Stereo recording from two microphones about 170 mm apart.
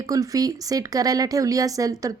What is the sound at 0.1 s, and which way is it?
Speech, 20° right (ahead or behind).